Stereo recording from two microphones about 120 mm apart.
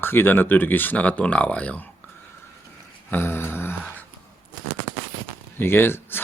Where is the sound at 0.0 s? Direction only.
20° left (ahead or behind).